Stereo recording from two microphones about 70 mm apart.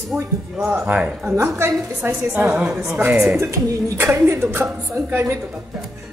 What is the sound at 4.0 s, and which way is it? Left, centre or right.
A woman's voice, right.